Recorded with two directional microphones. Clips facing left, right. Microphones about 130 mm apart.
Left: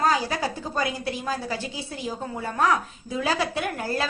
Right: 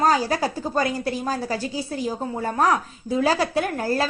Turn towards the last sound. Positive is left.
turn(degrees=-35)  # may be behind; listen again after turning